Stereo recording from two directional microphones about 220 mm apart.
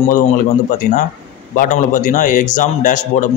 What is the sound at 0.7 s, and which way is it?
Speech, 35° left (ahead or behind).